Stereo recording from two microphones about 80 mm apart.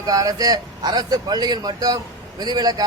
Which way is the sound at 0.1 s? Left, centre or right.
Right.